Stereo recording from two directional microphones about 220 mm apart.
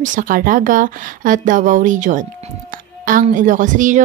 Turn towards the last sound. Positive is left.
turn(degrees=-35)  # may be behind; listen again after turning